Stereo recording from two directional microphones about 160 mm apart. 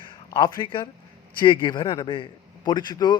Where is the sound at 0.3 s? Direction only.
25° left (ahead or behind).